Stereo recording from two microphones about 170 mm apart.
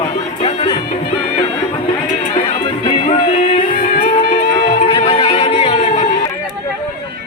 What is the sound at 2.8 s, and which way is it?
Music, 35° left (ahead or behind).